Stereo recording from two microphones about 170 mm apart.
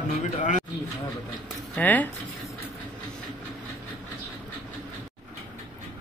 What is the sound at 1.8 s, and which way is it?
Speech, 10° left (ahead or behind).